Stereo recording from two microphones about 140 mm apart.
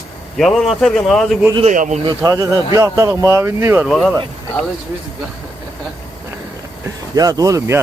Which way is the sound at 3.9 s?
Centre (ahead or behind).